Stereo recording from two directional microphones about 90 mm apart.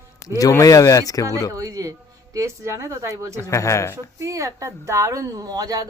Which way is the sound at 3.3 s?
35° left (ahead or behind).